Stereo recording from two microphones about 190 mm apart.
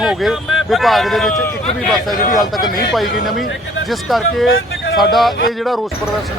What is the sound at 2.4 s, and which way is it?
Speech, 20° left (ahead or behind).